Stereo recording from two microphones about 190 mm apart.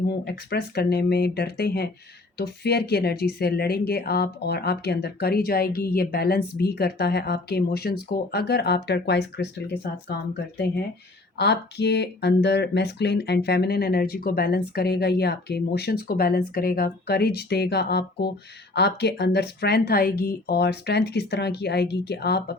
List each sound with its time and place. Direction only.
0.1 s speech: 60° left (ahead or behind)
11.3 s speech: 65° left (ahead or behind)